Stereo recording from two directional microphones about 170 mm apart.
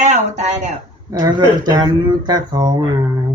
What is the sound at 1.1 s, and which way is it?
Speech, 20° right (ahead or behind).